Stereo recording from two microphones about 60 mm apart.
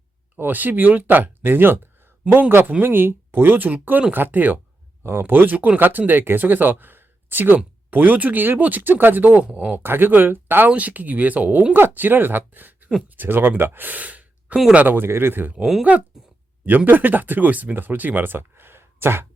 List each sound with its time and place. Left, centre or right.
0.3 s speech: right
10.7 s speech: right
14.9 s speech: right